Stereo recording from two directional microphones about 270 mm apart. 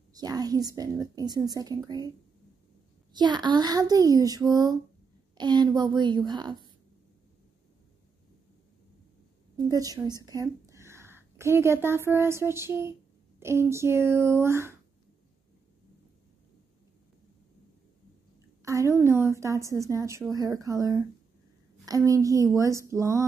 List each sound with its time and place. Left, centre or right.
0.1 s a woman's voice: centre
3.1 s a woman's voice: centre
9.6 s a woman's voice: centre
18.6 s a woman's voice: centre